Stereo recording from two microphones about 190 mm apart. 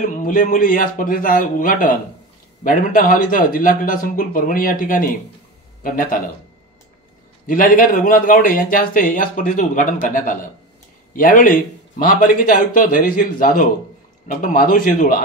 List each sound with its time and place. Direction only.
0.2 s a man's voice: 45° left (ahead or behind)
7.4 s a man's voice: 45° left (ahead or behind)